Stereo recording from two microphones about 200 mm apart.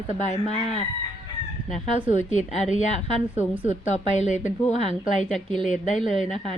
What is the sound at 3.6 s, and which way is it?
Speech, 35° left (ahead or behind).